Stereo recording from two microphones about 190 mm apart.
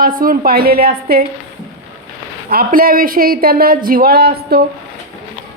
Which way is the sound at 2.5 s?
50° right (ahead or behind).